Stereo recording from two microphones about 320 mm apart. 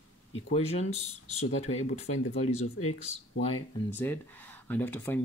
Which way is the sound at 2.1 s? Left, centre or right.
Left.